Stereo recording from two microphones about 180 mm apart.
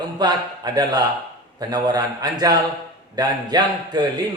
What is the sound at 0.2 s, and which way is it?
A man's voice, 25° right (ahead or behind).